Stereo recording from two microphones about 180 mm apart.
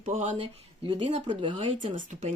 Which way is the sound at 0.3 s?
30° right (ahead or behind).